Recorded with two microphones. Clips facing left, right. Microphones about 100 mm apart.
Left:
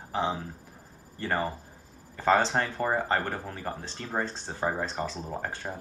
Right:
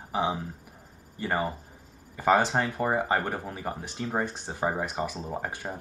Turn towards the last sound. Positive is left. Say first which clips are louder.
# right 1 dB
turn(degrees=-10)  # may be behind; listen again after turning